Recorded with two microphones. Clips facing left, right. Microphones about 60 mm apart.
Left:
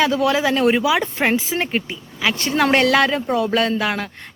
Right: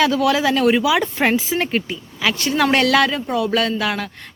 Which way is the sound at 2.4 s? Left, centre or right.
Left.